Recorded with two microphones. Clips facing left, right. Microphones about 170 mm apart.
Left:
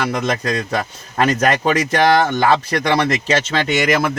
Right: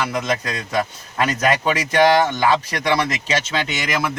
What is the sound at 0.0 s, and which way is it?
Speech, 40° left (ahead or behind).